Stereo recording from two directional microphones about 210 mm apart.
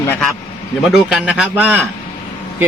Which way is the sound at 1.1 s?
5° right (ahead or behind).